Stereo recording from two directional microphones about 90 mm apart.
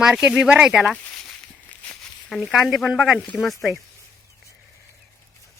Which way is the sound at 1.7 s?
15° left (ahead or behind).